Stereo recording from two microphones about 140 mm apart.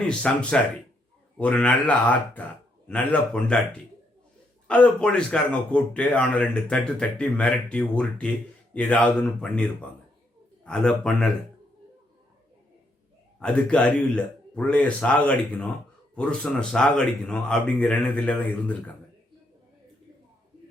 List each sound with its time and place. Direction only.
0.1 s a man's voice: 5° left (ahead or behind)
13.4 s speech: 10° left (ahead or behind)